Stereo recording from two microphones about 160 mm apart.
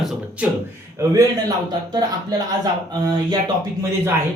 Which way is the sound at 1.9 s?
25° right (ahead or behind).